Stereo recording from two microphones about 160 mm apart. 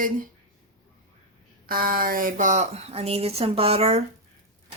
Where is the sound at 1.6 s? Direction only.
65° right (ahead or behind); by 4.0 s 40° right (ahead or behind).